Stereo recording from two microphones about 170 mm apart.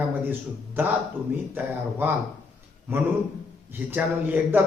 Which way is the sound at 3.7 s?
10° right (ahead or behind).